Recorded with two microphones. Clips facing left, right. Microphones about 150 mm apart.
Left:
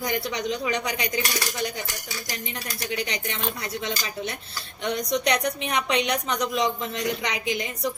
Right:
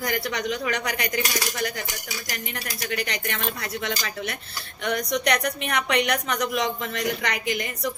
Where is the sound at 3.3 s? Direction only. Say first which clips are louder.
Right 1 dB; 20° left (ahead or behind).